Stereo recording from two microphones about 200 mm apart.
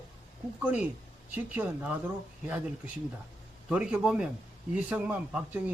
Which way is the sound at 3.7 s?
5° right (ahead or behind).